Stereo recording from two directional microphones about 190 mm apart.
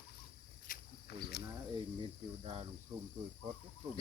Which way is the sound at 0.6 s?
55° left (ahead or behind).